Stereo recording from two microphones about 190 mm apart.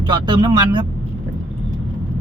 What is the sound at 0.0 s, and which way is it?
Speech, 25° right (ahead or behind).